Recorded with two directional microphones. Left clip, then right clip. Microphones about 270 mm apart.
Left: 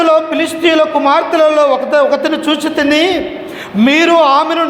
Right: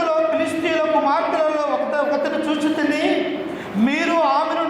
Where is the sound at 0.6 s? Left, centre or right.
Left.